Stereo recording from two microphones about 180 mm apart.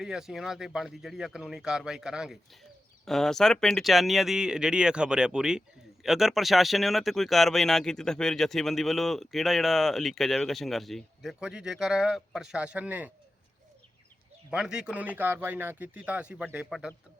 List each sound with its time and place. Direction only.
0.0 s speech: 5° right (ahead or behind)
14.5 s a man's voice: 5° right (ahead or behind)